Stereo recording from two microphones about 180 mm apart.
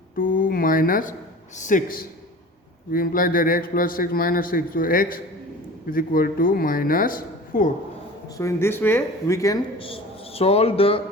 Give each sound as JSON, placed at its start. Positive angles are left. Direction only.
{"t": 0.2, "sound": "a man's voice", "side_deg": 50}
{"t": 8.4, "sound": "speech", "side_deg": 15}
{"t": 9.7, "sound": "a man's voice", "side_deg": 30}